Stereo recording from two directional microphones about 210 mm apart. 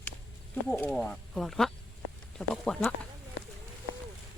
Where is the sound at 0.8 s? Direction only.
5° left (ahead or behind).